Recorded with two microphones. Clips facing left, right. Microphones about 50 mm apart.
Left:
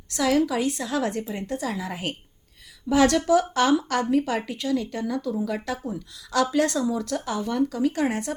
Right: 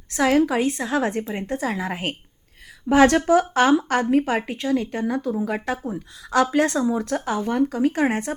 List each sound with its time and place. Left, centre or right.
0.1 s speech: right